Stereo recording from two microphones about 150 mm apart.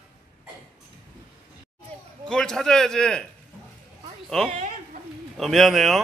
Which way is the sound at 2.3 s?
5° left (ahead or behind).